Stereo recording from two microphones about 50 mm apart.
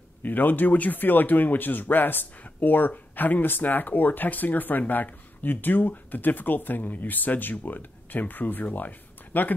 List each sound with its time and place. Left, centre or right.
0.2 s speech: left